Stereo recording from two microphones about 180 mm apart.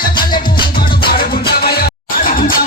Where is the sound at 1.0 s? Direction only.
60° left (ahead or behind).